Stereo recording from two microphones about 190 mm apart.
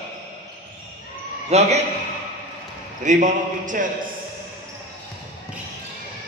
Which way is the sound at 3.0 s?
40° right (ahead or behind).